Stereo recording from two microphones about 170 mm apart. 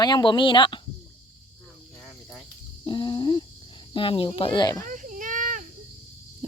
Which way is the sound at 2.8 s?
25° left (ahead or behind).